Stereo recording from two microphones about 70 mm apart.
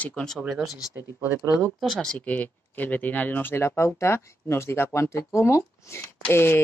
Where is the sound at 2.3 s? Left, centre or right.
Left.